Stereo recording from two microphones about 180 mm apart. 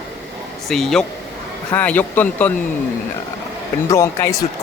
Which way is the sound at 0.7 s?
Centre (ahead or behind).